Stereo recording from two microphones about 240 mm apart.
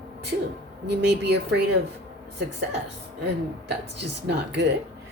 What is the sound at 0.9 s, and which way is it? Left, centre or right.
Speech, right.